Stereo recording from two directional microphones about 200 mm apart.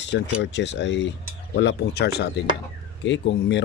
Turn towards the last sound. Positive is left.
turn(degrees=60)  # may be behind; listen again after turning